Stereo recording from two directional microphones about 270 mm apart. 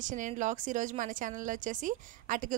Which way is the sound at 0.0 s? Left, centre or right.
Right.